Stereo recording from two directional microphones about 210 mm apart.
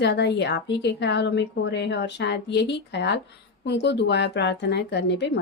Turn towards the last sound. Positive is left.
turn(degrees=55)  # may be behind; listen again after turning